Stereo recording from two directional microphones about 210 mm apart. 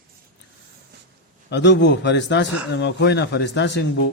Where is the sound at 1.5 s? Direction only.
55° left (ahead or behind).